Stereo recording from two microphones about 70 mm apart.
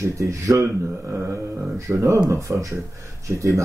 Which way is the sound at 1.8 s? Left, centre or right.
Right.